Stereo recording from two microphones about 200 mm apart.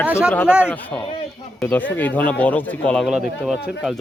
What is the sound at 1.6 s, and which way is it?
Speech, 10° left (ahead or behind).